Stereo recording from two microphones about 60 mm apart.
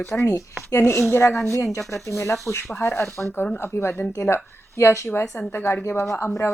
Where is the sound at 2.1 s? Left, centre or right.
Left.